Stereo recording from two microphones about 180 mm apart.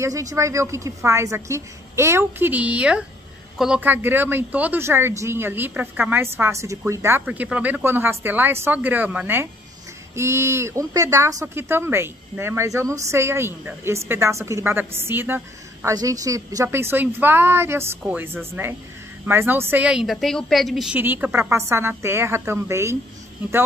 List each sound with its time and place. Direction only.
0.0 s speech: 20° right (ahead or behind)